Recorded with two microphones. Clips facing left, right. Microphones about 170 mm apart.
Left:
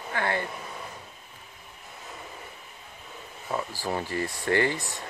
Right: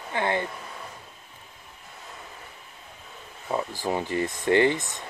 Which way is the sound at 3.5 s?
15° right (ahead or behind).